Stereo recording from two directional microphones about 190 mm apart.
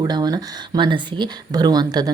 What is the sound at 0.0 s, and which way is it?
Speech, 20° right (ahead or behind).